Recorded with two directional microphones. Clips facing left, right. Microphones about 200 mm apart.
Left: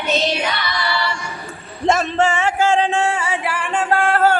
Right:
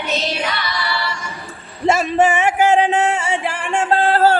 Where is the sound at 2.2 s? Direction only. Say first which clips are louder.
Right 2 dB; 20° right (ahead or behind).